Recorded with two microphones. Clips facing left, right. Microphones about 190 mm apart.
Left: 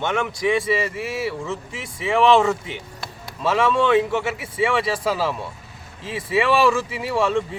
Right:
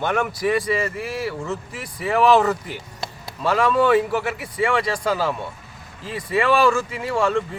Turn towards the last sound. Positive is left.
turn(degrees=0)  # may be behind; listen again after turning